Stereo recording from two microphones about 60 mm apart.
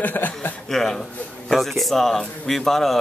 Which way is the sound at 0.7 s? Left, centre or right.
Centre.